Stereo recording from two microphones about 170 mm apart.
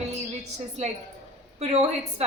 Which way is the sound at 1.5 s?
40° right (ahead or behind).